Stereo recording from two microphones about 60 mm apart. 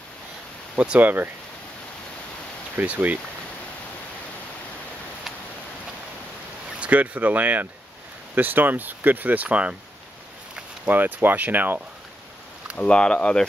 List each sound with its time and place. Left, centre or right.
0.7 s speech: right
2.8 s speech: right
6.8 s speech: right
10.9 s speech: right
12.7 s speech: centre